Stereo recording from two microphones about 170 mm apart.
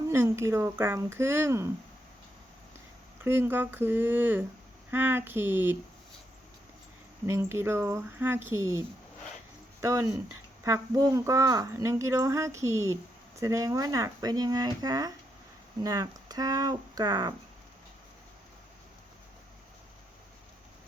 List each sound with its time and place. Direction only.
0.1 s speech: 15° right (ahead or behind)
3.2 s speech: 15° right (ahead or behind)
7.3 s speech: 15° right (ahead or behind)
9.8 s speech: 15° right (ahead or behind)